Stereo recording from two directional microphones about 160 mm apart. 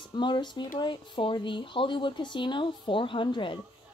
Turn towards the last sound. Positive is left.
turn(degrees=30)  # may be behind; listen again after turning